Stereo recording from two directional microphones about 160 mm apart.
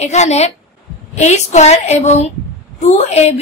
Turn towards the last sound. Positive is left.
turn(degrees=40)  # may be behind; listen again after turning